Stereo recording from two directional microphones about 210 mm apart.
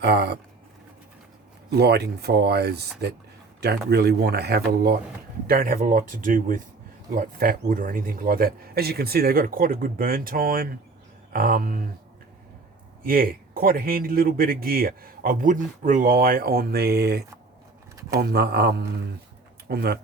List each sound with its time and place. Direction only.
0.0 s speech: 50° right (ahead or behind)
1.7 s speech: 50° right (ahead or behind)
13.1 s speech: 45° right (ahead or behind)